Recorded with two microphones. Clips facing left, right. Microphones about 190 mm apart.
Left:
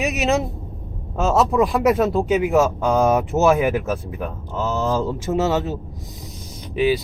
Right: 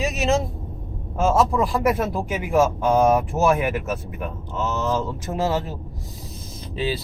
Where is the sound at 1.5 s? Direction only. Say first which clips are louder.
Left 4 dB; 20° left (ahead or behind).